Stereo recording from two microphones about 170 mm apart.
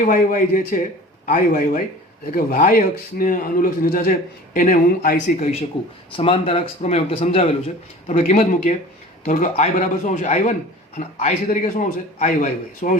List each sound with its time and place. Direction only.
0.1 s a man's voice: 50° left (ahead or behind)